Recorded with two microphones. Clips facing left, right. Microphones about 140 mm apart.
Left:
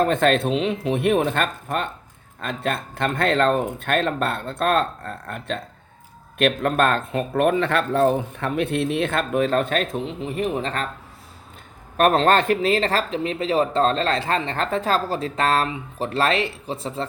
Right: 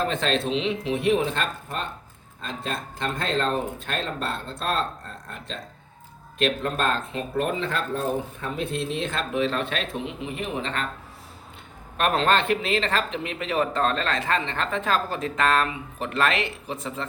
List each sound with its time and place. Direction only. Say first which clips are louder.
0.0 s speech: left 6 dB; 50° left (ahead or behind)
11.9 s speech: left 5 dB; 40° left (ahead or behind)